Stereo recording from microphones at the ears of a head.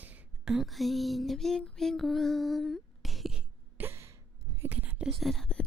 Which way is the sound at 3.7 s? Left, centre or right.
Right.